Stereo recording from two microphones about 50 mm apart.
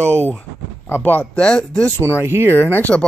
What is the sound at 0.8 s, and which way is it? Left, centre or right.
Speech, left.